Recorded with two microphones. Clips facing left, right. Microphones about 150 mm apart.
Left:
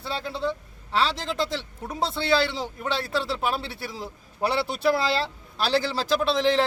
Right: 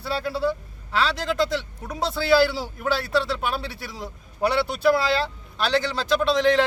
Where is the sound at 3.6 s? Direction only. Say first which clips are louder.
Right 1 dB; 30° left (ahead or behind).